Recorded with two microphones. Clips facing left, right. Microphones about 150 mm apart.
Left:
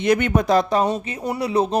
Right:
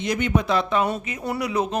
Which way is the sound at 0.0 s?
60° left (ahead or behind).